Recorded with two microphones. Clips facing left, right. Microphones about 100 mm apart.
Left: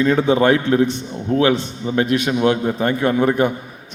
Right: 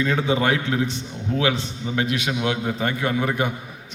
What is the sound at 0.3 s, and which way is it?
A man's voice, 50° left (ahead or behind).